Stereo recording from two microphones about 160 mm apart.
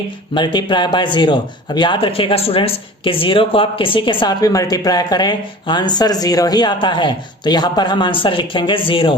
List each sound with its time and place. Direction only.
0.3 s speech: 30° left (ahead or behind)